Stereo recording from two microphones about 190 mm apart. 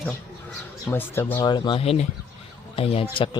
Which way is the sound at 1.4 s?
25° left (ahead or behind).